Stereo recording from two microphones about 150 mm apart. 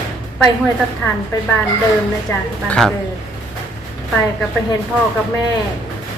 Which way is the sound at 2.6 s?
5° left (ahead or behind).